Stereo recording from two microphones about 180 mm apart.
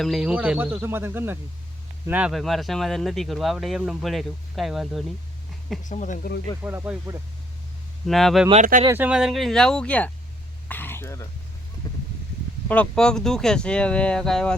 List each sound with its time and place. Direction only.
0.0 s speech: centre (ahead or behind)
5.8 s speech: 45° left (ahead or behind)
6.6 s speech: 10° right (ahead or behind)
8.0 s speech: centre (ahead or behind)
10.7 s throat clearing: 10° left (ahead or behind)
11.8 s a sound: 20° left (ahead or behind)
12.6 s speech: 5° left (ahead or behind)